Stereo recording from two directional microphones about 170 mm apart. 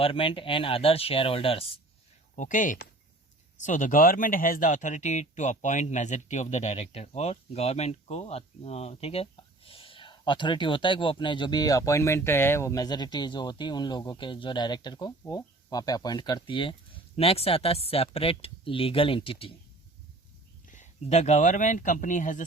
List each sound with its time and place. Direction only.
0.0 s speech: 30° left (ahead or behind)
2.3 s speech: 50° left (ahead or behind); by 19.5 s 30° left (ahead or behind)
20.7 s speech: 45° left (ahead or behind)